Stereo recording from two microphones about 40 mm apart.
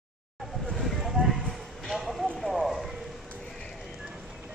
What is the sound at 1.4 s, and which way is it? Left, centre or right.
Clip-clop, centre.